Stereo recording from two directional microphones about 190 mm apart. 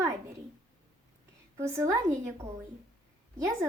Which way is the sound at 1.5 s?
15° right (ahead or behind).